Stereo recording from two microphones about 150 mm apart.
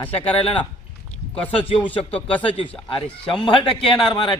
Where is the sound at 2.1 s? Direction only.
10° left (ahead or behind).